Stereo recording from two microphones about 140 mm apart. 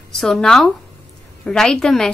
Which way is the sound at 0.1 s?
Centre (ahead or behind).